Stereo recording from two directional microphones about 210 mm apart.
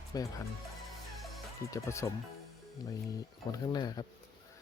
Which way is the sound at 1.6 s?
15° left (ahead or behind).